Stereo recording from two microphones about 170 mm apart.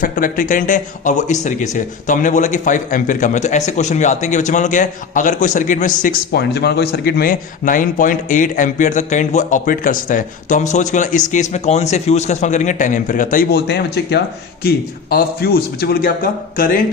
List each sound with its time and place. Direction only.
0.0 s speech: 55° left (ahead or behind)
6.3 s speech: 75° left (ahead or behind)
15.1 s a man's voice: 65° left (ahead or behind)